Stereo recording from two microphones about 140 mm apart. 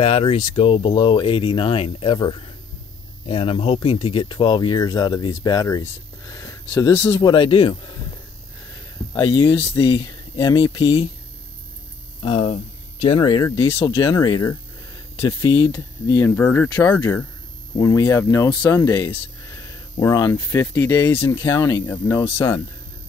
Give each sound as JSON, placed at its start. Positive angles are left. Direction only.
{"t": 0.0, "sound": "speech", "side_deg": 45}
{"t": 9.1, "sound": "speech", "side_deg": 30}
{"t": 9.6, "sound": "speech", "side_deg": 40}
{"t": 12.2, "sound": "speech", "side_deg": 40}
{"t": 13.9, "sound": "speech", "side_deg": 25}
{"t": 16.3, "sound": "speech", "side_deg": 15}
{"t": 20.3, "sound": "speech", "side_deg": 15}